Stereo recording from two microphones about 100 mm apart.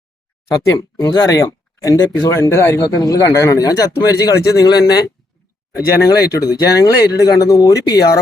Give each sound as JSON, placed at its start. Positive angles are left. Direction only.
{"t": 0.9, "sound": "speech", "side_deg": 30}
{"t": 2.8, "sound": "speech", "side_deg": 40}